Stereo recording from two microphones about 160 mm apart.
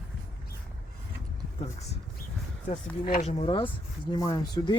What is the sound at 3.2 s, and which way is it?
Speech, 35° left (ahead or behind).